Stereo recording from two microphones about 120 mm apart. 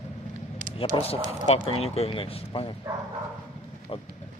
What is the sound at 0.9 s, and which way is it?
Speech, 45° left (ahead or behind).